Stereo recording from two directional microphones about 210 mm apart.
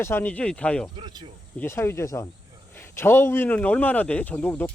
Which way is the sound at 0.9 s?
20° right (ahead or behind).